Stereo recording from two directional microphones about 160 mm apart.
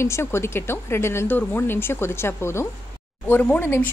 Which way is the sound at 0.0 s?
15° left (ahead or behind).